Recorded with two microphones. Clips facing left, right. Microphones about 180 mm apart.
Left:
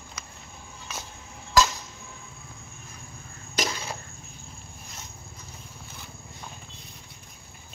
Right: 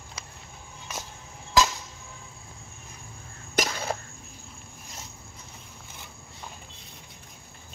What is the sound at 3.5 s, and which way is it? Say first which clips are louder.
Cough: right 2 dB; 50° right (ahead or behind).